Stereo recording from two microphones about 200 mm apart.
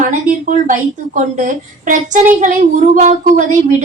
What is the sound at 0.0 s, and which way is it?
Speech, 40° right (ahead or behind).